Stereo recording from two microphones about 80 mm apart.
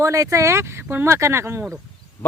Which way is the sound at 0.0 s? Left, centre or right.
Right.